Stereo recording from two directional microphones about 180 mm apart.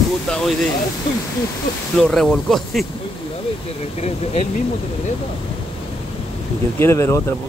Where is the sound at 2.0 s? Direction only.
5° left (ahead or behind).